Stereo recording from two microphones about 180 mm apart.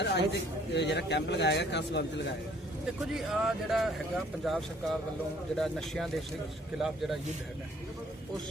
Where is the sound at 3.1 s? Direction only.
Centre (ahead or behind).